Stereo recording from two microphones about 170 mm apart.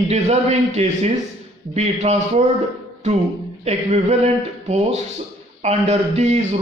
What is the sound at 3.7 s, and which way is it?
Speech, 40° right (ahead or behind).